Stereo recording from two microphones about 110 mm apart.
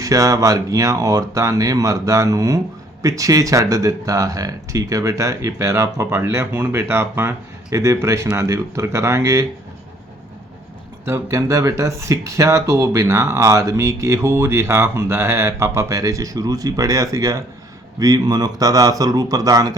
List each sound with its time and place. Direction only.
0.0 s speech: 30° right (ahead or behind)
11.0 s speech: 25° right (ahead or behind)